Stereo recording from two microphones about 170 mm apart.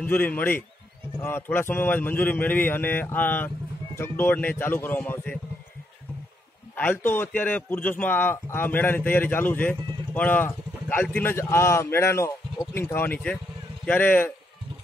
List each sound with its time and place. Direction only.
0.0 s a man's voice: 10° left (ahead or behind)
6.7 s a man's voice: 10° left (ahead or behind)